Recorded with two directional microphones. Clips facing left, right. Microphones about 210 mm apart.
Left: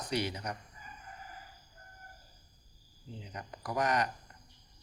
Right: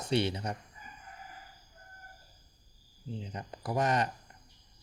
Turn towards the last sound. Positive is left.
turn(degrees=-25)  # may be behind; listen again after turning